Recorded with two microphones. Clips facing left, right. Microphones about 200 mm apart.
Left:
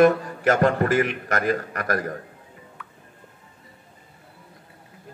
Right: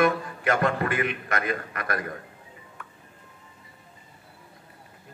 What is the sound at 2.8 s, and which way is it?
Music, 45° right (ahead or behind).